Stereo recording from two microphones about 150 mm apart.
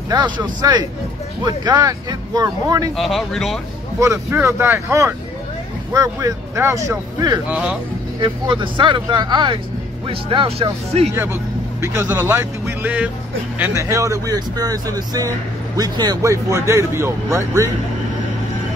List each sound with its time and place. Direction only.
0.1 s speech: 30° right (ahead or behind)
3.0 s speech: centre (ahead or behind)
4.0 s speech: 20° right (ahead or behind)
7.4 s speech: 10° right (ahead or behind)
8.2 s speech: 30° right (ahead or behind)
11.8 s speech: 20° right (ahead or behind)